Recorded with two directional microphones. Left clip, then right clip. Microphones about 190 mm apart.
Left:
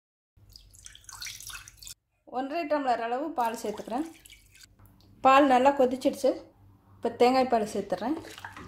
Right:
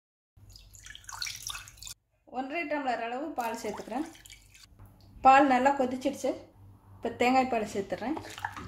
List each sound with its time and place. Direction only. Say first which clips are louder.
2.3 s speech: left 4 dB; 35° left (ahead or behind)
5.2 s speech: left 1 dB; 30° left (ahead or behind)
8.4 s bathtub: right 6 dB; 15° right (ahead or behind)